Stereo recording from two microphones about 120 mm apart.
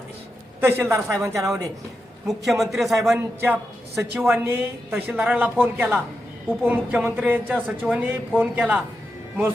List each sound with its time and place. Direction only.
0.6 s speech: 20° right (ahead or behind)
2.2 s a man's voice: centre (ahead or behind)
3.4 s a woman's voice: 15° right (ahead or behind)